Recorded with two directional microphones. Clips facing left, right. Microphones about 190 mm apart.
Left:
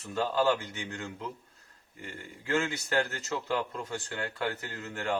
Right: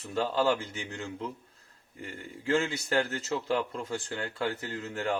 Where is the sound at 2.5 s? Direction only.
25° right (ahead or behind).